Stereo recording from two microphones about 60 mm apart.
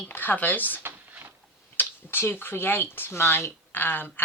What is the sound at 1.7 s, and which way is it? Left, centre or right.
Speech, left.